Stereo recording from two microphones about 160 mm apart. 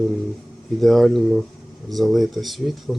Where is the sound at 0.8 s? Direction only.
Centre (ahead or behind).